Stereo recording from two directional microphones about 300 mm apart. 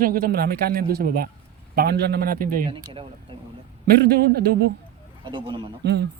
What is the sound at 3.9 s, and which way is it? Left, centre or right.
Speech, right.